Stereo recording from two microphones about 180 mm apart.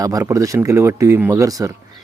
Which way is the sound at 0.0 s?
20° right (ahead or behind).